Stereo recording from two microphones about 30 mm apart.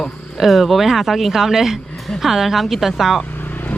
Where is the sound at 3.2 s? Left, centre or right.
Left.